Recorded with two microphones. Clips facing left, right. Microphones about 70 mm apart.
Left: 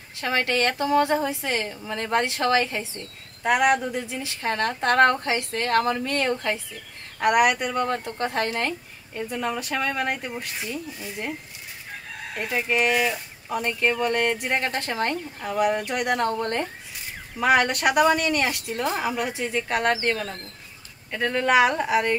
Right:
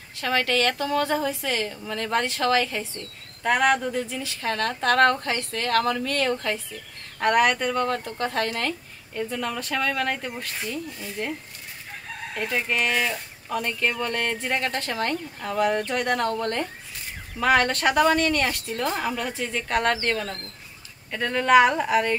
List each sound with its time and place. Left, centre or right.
0.2 s speech: left
12.4 s speech: centre
21.1 s speech: centre